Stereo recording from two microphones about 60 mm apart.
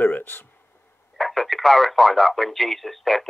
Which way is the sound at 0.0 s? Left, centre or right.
Left.